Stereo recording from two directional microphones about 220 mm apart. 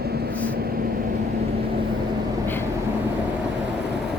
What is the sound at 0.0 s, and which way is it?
Vehicle, 45° right (ahead or behind).